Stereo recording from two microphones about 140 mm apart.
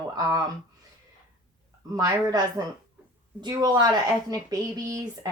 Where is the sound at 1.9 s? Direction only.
25° right (ahead or behind).